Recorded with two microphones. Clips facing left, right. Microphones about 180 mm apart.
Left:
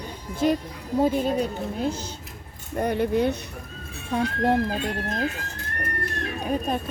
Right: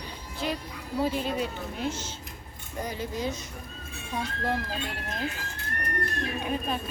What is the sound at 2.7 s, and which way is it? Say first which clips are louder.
Speech: left 10 dB; 60° left (ahead or behind).